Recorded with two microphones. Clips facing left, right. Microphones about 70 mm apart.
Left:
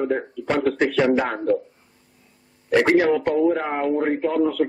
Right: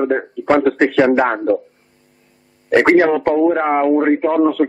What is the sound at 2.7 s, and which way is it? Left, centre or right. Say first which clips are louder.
A man's voice: right 5 dB; right.